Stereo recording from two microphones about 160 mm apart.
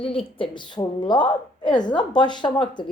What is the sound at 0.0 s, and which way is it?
A woman's voice, 35° left (ahead or behind).